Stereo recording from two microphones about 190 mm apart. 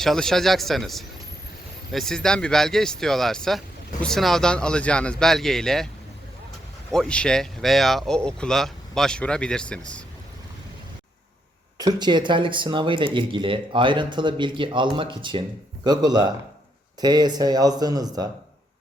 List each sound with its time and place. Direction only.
0.0 s speech: centre (ahead or behind)
6.9 s speech: 5° left (ahead or behind)
11.8 s speech: 20° right (ahead or behind)